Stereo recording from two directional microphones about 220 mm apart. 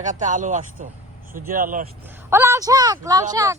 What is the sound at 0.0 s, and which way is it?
Speech, 35° right (ahead or behind).